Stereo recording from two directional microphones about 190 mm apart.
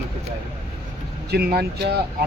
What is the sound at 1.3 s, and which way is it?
Speech, 55° right (ahead or behind).